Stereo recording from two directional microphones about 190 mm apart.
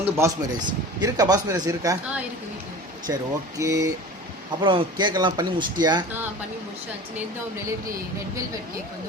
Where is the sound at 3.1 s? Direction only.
15° right (ahead or behind).